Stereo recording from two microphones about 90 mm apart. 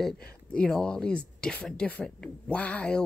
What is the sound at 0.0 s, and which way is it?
Speech, 10° left (ahead or behind).